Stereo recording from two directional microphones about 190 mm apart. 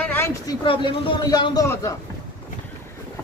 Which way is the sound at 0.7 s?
25° left (ahead or behind).